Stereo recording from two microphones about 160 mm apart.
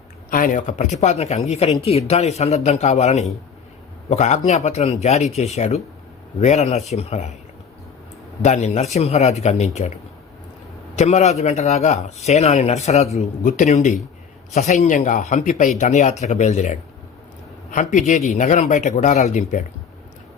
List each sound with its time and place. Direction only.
0.3 s a man's voice: 60° left (ahead or behind)
8.4 s a man's voice: 45° left (ahead or behind)
10.9 s a man's voice: 45° left (ahead or behind)